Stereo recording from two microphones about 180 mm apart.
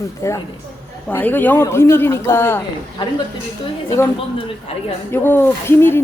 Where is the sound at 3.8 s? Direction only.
15° left (ahead or behind).